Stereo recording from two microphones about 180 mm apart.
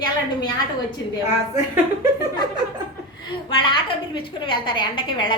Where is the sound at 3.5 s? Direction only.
25° left (ahead or behind).